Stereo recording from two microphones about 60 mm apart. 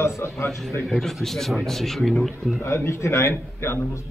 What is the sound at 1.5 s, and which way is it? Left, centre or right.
Speech, centre.